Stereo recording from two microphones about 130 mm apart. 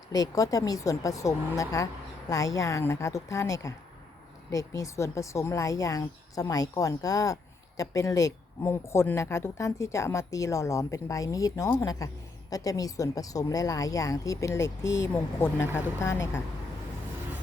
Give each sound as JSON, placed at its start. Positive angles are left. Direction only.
{"t": 0.1, "sound": "speech", "side_deg": 30}